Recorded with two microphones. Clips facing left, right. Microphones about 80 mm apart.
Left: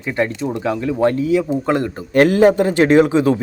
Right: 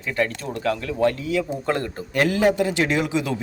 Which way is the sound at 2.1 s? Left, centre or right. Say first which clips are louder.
Left 8 dB; left.